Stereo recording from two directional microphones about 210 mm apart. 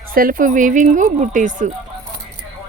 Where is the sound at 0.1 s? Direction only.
40° right (ahead or behind).